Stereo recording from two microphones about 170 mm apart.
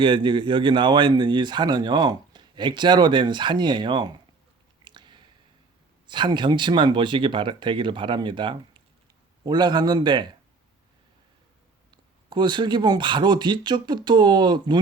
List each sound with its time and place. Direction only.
0.0 s a man's voice: 30° right (ahead or behind)
4.8 s chewing: 25° right (ahead or behind)
6.1 s a man's voice: 25° right (ahead or behind)
11.9 s a man's voice: 25° right (ahead or behind)